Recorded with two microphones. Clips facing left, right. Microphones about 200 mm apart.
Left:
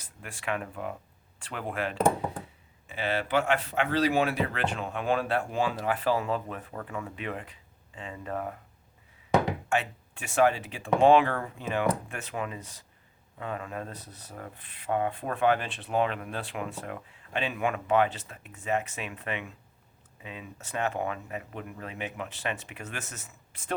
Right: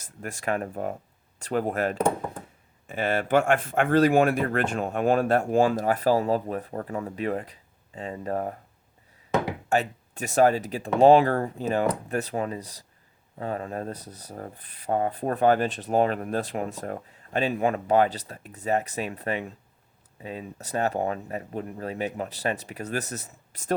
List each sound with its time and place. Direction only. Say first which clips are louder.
0.0 s speech: right 6 dB; 45° right (ahead or behind)
9.6 s speech: right 4 dB; 40° right (ahead or behind)